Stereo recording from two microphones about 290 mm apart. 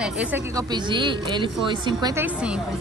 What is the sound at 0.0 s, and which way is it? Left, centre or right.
Speech, centre.